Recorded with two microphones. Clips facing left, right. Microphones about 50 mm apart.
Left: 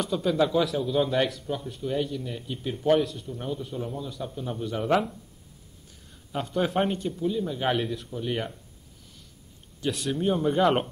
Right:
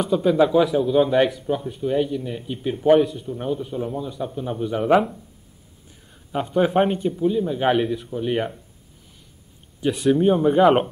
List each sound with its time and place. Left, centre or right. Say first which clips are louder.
0.0 s speech: right 7 dB; centre
6.3 s speech: right 7 dB; centre
9.8 s speech: right 10 dB; centre